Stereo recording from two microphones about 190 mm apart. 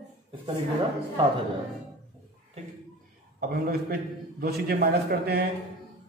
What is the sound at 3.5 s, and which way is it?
A man's voice, 50° right (ahead or behind).